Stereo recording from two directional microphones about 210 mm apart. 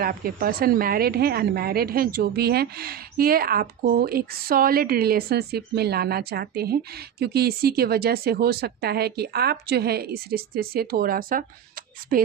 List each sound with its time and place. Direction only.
0.0 s a woman's voice: 45° right (ahead or behind)